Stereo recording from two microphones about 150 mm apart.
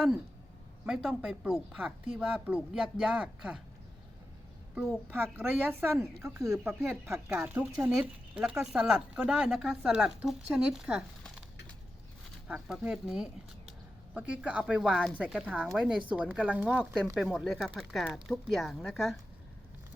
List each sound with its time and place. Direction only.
0.9 s speech: centre (ahead or behind)
4.7 s a child's voice: 5° right (ahead or behind)
5.1 s speech: 15° right (ahead or behind)
6.8 s speech: 5° right (ahead or behind)
12.5 s speech: 5° right (ahead or behind)